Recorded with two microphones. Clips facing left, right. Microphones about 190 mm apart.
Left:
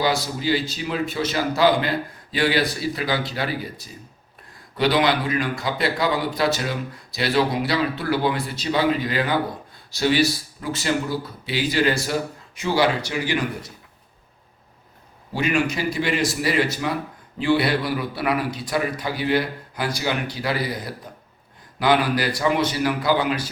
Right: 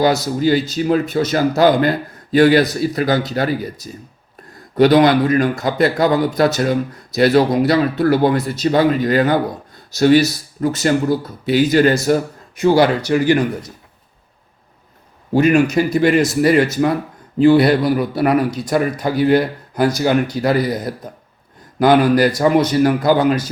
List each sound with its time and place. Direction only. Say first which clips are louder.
0.0 s speech: right 8 dB; 45° right (ahead or behind)
15.3 s speech: right 9 dB; 45° right (ahead or behind)